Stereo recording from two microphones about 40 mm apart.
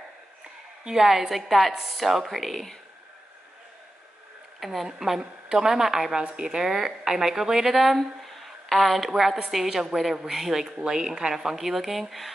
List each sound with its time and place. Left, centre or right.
0.8 s a woman's voice: centre
4.6 s a woman's voice: centre
6.3 s a woman's voice: centre